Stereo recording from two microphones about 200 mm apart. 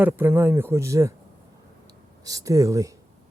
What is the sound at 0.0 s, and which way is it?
Speech, 10° right (ahead or behind).